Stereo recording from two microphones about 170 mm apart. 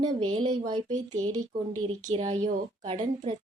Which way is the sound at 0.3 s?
30° right (ahead or behind).